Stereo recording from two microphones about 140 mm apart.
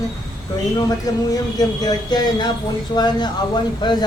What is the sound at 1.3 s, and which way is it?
Speech, 30° left (ahead or behind).